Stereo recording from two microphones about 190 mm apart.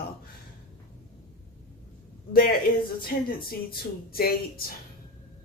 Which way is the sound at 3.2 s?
50° left (ahead or behind).